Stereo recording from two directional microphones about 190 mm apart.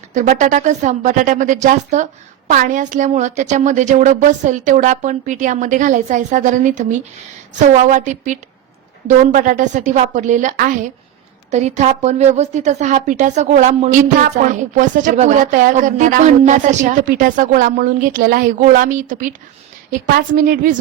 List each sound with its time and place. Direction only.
0.1 s a woman's voice: 40° right (ahead or behind)